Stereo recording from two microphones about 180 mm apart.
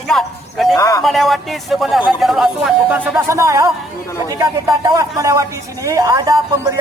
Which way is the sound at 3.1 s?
15° right (ahead or behind).